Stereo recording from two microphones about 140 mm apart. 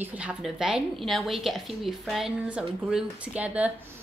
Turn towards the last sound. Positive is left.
turn(degrees=-10)  # may be behind; listen again after turning